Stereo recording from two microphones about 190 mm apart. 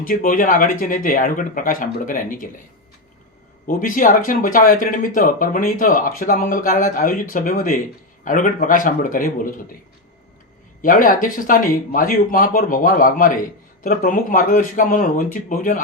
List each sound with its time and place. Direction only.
0.0 s speech: 45° left (ahead or behind)
3.7 s speech: 45° left (ahead or behind)
10.8 s speech: 45° left (ahead or behind)